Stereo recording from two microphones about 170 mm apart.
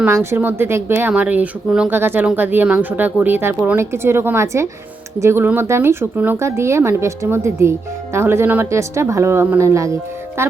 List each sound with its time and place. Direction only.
0.0 s speech: 15° right (ahead or behind)